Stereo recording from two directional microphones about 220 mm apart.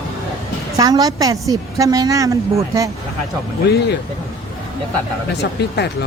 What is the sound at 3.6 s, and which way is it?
Speech, 50° left (ahead or behind).